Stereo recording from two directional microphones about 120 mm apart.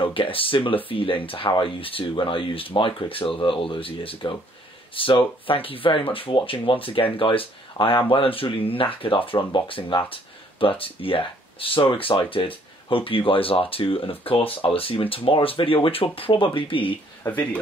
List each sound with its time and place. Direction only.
0.0 s speech: 45° left (ahead or behind)
17.2 s speech: 15° left (ahead or behind)